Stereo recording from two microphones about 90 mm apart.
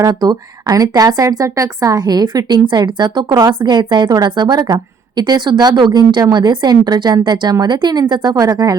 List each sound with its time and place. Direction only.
0.0 s speech: 45° right (ahead or behind)